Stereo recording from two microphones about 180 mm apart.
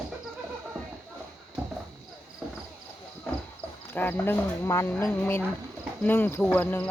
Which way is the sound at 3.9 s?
10° left (ahead or behind).